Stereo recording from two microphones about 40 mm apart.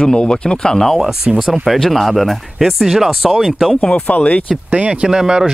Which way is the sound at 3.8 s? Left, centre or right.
Left.